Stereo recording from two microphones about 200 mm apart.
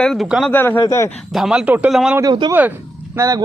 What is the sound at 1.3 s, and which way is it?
Speech, 5° right (ahead or behind).